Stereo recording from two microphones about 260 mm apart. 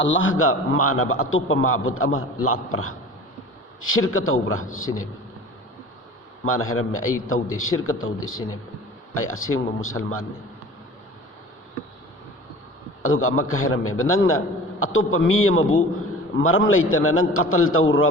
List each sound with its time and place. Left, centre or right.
0.0 s a man's voice: left
3.8 s a man's voice: left
6.4 s a man's voice: left
13.0 s a man's voice: left